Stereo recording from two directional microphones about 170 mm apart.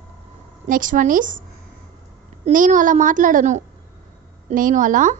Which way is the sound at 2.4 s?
50° right (ahead or behind).